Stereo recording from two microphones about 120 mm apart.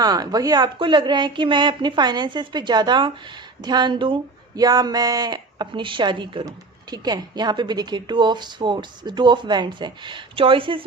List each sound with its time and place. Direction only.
0.0 s a woman's voice: 30° right (ahead or behind)